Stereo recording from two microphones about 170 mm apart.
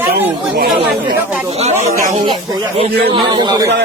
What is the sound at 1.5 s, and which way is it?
Speech, 35° right (ahead or behind).